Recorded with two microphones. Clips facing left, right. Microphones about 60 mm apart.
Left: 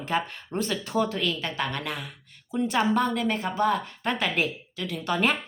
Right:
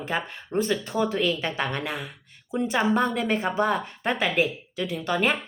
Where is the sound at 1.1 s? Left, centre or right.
Centre.